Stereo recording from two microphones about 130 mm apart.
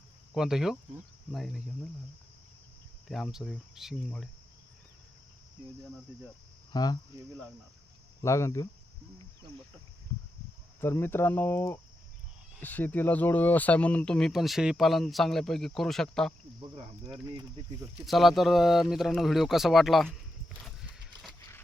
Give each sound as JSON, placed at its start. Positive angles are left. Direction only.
{"t": 0.3, "sound": "speech", "side_deg": -5}
{"t": 3.1, "sound": "speech", "side_deg": 0}
{"t": 6.7, "sound": "speech", "side_deg": 30}
{"t": 8.2, "sound": "speech", "side_deg": 20}
{"t": 10.8, "sound": "speech", "side_deg": 20}
{"t": 18.0, "sound": "speech", "side_deg": 0}